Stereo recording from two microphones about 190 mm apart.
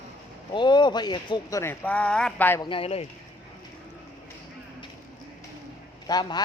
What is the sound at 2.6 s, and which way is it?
Speech, 30° left (ahead or behind).